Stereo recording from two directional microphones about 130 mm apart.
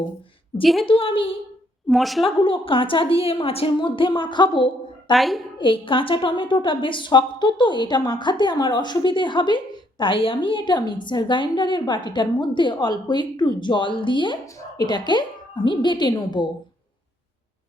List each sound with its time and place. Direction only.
0.6 s a woman's voice: centre (ahead or behind)
0.9 s a woman's voice: 45° left (ahead or behind)
1.9 s a woman's voice: centre (ahead or behind)
2.2 s a woman's voice: 45° left (ahead or behind)
5.1 s a woman's voice: centre (ahead or behind)
5.5 s a woman's voice: 40° left (ahead or behind)